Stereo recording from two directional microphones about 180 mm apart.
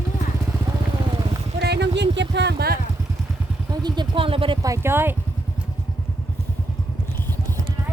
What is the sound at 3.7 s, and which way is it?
Vehicle, 25° right (ahead or behind).